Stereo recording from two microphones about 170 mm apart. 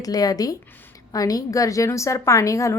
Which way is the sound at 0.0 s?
20° left (ahead or behind).